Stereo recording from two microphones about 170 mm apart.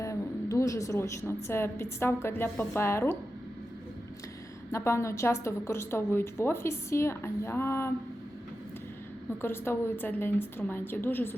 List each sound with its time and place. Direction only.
0.0 s a woman's voice: 20° left (ahead or behind)
4.7 s a woman's voice: 15° left (ahead or behind)
9.4 s a woman's voice: 15° left (ahead or behind)